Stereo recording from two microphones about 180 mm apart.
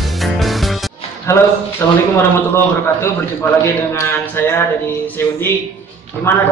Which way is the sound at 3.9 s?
15° left (ahead or behind).